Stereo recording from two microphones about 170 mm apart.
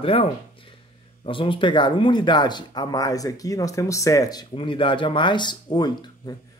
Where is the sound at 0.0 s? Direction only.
35° left (ahead or behind).